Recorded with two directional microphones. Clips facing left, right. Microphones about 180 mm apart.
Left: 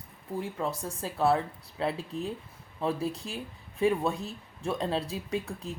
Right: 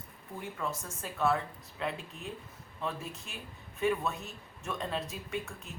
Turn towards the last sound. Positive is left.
turn(degrees=35)  # may be behind; listen again after turning